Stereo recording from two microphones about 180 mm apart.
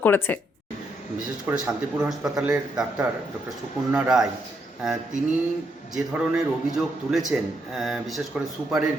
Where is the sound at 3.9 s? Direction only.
5° right (ahead or behind).